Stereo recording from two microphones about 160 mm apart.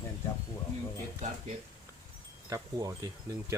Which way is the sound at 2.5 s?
20° right (ahead or behind).